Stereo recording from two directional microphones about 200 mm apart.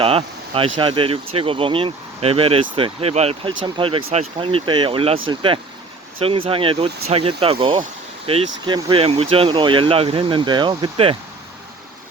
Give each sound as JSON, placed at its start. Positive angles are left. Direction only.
{"t": 0.0, "sound": "speech", "side_deg": -30}